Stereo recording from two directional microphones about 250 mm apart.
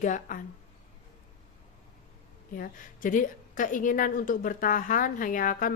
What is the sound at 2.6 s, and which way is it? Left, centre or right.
A woman's voice, left.